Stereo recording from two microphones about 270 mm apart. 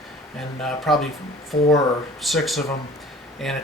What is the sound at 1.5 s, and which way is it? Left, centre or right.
Speech, centre.